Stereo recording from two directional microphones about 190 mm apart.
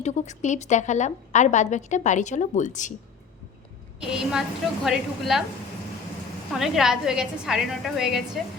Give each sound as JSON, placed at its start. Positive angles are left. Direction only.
{"t": 0.0, "sound": "a woman's voice", "side_deg": 35}
{"t": 4.0, "sound": "a woman's voice", "side_deg": -5}
{"t": 6.5, "sound": "a woman's voice", "side_deg": 0}